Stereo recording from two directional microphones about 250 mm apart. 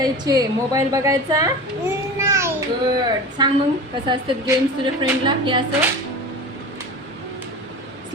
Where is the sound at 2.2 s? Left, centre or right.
Centre.